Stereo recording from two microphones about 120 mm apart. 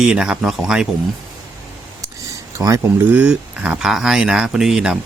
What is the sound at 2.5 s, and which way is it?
Speech, 25° right (ahead or behind).